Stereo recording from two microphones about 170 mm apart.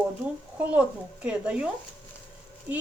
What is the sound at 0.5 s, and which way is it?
Speech, 10° right (ahead or behind).